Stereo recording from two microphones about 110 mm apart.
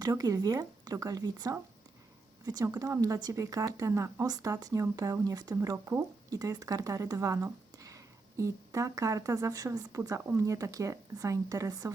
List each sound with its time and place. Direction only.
0.0 s speech: 35° right (ahead or behind)
5.6 s speech: 25° right (ahead or behind)
6.3 s speech: 35° right (ahead or behind)